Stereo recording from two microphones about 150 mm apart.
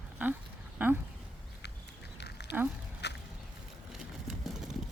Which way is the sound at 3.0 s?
90° left.